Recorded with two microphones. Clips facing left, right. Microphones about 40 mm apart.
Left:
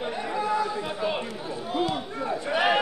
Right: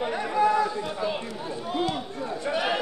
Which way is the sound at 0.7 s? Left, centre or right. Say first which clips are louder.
Left 1 dB; centre.